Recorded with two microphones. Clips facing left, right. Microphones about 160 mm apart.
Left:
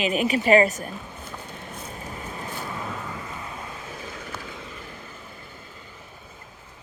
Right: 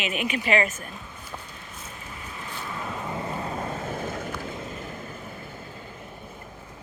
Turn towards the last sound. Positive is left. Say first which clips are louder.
# right 5 dB
turn(degrees=-45)  # may be behind; listen again after turning